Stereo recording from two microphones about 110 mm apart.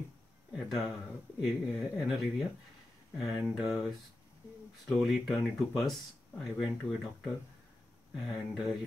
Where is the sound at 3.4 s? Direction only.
5° right (ahead or behind).